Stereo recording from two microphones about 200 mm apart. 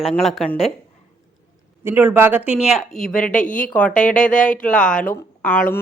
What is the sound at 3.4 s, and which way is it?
Speech, 40° left (ahead or behind).